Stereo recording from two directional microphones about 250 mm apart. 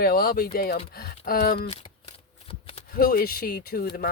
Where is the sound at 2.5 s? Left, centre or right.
Left.